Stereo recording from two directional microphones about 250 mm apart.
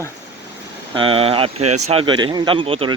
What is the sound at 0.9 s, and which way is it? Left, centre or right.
Speech, right.